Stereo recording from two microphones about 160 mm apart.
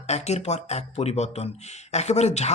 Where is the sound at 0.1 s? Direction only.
45° left (ahead or behind).